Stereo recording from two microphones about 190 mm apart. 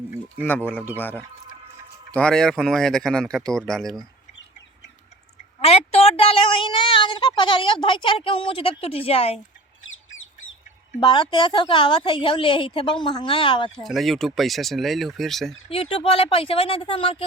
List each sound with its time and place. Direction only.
0.4 s a man's voice: 10° left (ahead or behind)
5.5 s a sound: 30° left (ahead or behind)
11.0 s a woman's voice: 25° left (ahead or behind)
13.7 s speech: centre (ahead or behind)
15.7 s a woman's voice: 30° left (ahead or behind)